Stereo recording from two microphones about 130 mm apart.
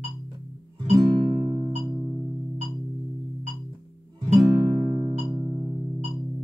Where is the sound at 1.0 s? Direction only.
35° right (ahead or behind).